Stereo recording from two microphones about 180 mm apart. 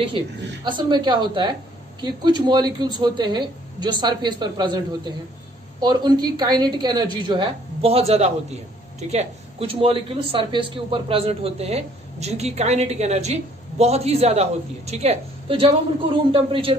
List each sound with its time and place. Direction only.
0.7 s a woman's voice: 25° right (ahead or behind)